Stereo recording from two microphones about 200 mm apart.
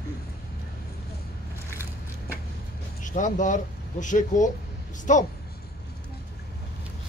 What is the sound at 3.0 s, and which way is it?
Speech, 40° left (ahead or behind).